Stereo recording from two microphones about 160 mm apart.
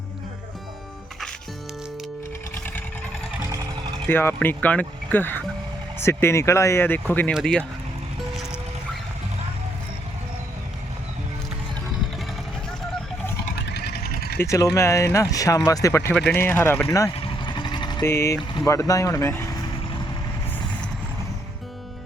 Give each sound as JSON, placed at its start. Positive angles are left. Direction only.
{"t": 4.0, "sound": "speech", "side_deg": 15}
{"t": 13.6, "sound": "vehicle", "side_deg": 90}
{"t": 14.3, "sound": "speech", "side_deg": 20}
{"t": 16.9, "sound": "vehicle", "side_deg": 25}
{"t": 18.6, "sound": "speech", "side_deg": 20}